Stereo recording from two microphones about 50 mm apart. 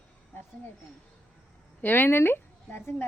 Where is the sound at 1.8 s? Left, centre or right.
Left.